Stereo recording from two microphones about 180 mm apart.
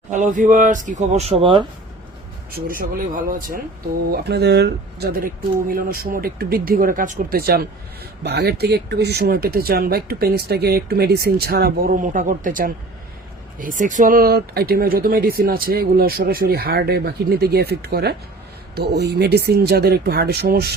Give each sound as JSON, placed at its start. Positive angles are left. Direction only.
{"t": 0.1, "sound": "speech", "side_deg": -45}
{"t": 2.5, "sound": "speech", "side_deg": -50}
{"t": 4.1, "sound": "speech", "side_deg": -65}